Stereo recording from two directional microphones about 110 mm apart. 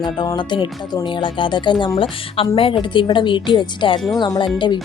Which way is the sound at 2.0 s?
55° left (ahead or behind).